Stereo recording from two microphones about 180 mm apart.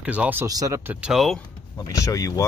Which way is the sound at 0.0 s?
5° right (ahead or behind).